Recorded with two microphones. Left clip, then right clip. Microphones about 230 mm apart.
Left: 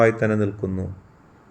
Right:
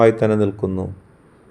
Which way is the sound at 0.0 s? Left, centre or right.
Centre.